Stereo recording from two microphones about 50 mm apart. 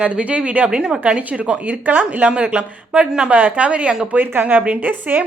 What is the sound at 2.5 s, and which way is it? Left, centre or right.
Speech, centre.